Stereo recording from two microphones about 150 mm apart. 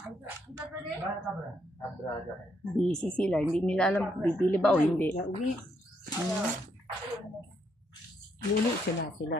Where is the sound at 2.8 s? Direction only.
5° left (ahead or behind).